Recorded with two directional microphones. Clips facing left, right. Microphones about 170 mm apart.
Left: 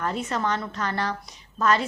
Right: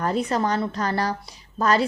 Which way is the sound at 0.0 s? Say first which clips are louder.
Right 4 dB; 35° right (ahead or behind).